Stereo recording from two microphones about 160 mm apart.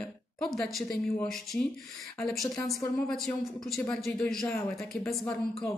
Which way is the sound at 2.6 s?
Centre (ahead or behind).